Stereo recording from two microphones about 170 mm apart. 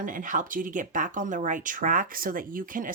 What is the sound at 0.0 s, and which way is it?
Speech, 50° right (ahead or behind).